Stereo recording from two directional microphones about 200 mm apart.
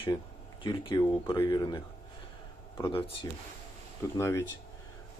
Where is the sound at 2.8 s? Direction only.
25° left (ahead or behind).